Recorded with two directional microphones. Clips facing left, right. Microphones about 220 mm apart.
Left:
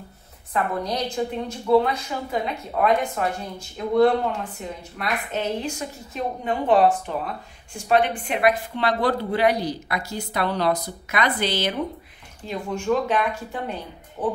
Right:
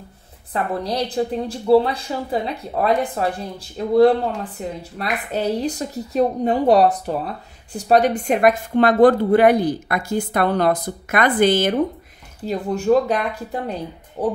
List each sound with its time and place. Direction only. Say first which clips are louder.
0.5 s a woman's voice: right 2 dB; 35° right (ahead or behind); by 11.8 s 50° right (ahead or behind)
12.4 s a woman's voice: right 6 dB; 40° right (ahead or behind)